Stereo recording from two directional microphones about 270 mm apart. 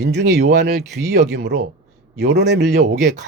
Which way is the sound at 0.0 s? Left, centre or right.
Right.